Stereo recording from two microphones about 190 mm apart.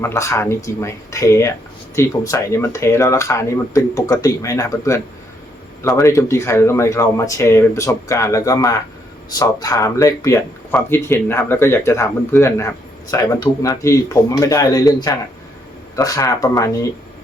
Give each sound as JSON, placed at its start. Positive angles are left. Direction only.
{"t": 0.0, "sound": "speech", "side_deg": 15}